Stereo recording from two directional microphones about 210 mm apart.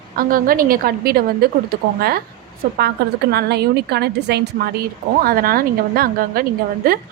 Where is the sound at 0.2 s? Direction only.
40° right (ahead or behind).